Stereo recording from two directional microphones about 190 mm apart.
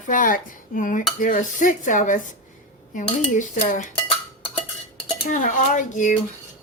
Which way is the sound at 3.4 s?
40° left (ahead or behind).